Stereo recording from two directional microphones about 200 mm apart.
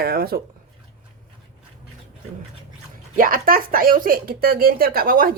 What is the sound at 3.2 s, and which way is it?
Speech, 45° right (ahead or behind).